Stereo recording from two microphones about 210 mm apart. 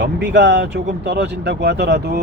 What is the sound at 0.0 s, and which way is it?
Speech, 55° right (ahead or behind).